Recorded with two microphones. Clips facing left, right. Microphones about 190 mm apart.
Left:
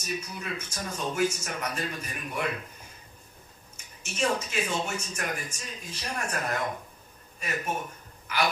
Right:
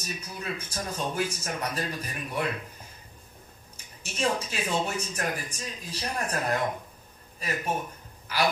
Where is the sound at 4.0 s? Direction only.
35° right (ahead or behind).